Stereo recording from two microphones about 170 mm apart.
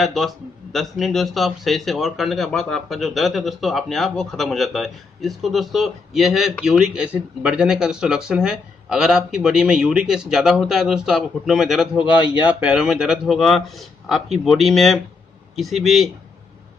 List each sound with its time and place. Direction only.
0.0 s a man's voice: centre (ahead or behind)
12.0 s speech: 30° left (ahead or behind)
12.4 s a man's voice: 10° right (ahead or behind)